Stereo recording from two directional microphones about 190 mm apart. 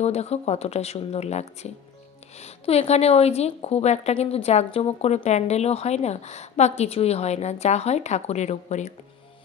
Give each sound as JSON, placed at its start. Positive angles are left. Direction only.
{"t": 0.0, "sound": "speech", "side_deg": 35}